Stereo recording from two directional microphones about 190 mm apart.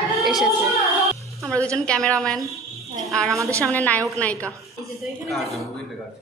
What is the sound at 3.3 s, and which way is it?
Speech, 15° right (ahead or behind).